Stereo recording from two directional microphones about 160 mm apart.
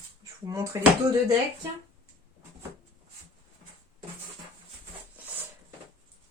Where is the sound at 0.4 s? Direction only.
20° right (ahead or behind).